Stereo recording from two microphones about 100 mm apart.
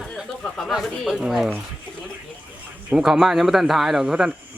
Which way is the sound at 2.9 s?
5° right (ahead or behind).